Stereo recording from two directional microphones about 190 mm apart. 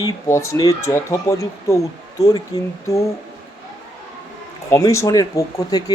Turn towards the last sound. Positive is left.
turn(degrees=20)  # may be behind; listen again after turning